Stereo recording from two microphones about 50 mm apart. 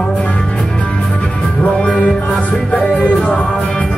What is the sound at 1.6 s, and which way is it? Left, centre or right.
Music, left.